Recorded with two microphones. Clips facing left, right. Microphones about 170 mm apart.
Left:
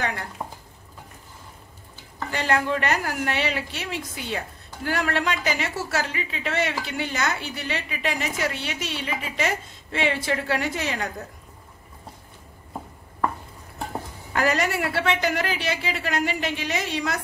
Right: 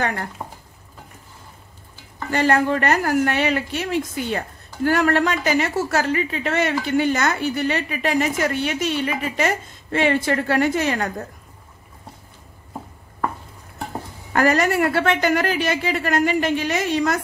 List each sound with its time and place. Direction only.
0.4 s stir: 5° left (ahead or behind)
2.3 s a woman's voice: 50° right (ahead or behind)
14.3 s a woman's voice: 50° right (ahead or behind)